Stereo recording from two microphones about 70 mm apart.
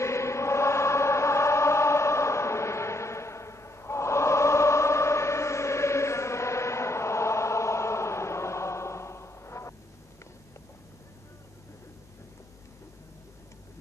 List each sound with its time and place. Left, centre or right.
0.0 s chant: left